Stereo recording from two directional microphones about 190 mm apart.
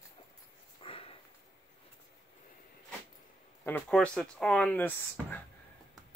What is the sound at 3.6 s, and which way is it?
Speech, 5° left (ahead or behind).